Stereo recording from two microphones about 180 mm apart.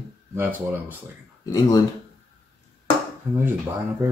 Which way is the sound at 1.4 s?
20° left (ahead or behind).